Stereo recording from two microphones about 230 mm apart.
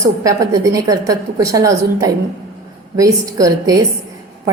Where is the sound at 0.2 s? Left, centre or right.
Centre.